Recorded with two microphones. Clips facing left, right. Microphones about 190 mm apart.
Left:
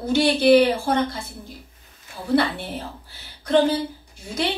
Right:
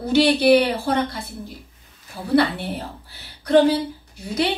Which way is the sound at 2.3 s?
60° right (ahead or behind).